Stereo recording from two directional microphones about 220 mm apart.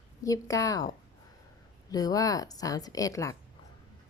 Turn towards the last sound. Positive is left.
turn(degrees=15)  # may be behind; listen again after turning